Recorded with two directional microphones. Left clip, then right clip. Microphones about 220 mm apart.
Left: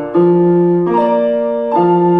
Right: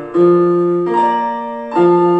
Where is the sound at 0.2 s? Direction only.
20° right (ahead or behind).